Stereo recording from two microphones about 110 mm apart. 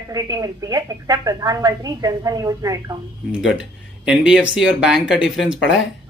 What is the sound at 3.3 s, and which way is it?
Speech, 5° right (ahead or behind).